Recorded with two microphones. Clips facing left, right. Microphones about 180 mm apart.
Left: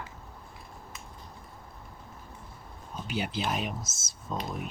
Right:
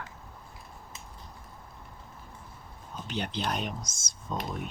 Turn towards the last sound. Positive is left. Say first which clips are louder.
# even
turn(degrees=5)  # may be behind; listen again after turning